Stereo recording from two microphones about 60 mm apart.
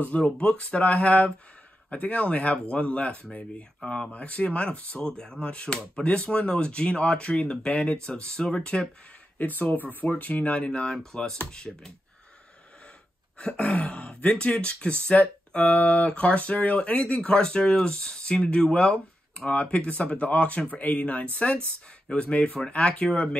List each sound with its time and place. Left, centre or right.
0.0 s speech: left
9.4 s speech: left; by 11.9 s centre
13.4 s speech: centre